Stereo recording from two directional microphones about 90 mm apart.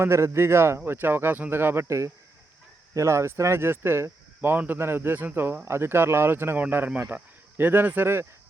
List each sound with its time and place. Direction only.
0.0 s speech: 30° right (ahead or behind)